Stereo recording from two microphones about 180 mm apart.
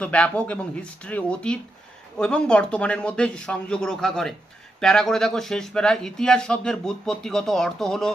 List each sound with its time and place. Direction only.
0.0 s speech: 5° left (ahead or behind)